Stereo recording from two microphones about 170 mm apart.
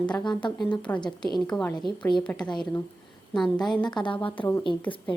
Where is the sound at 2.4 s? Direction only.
25° left (ahead or behind).